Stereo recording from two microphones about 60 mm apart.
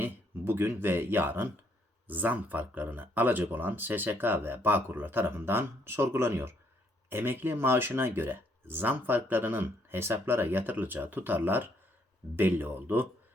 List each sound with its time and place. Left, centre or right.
0.0 s speech: right